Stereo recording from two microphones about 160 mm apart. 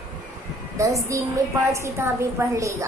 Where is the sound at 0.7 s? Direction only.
20° right (ahead or behind).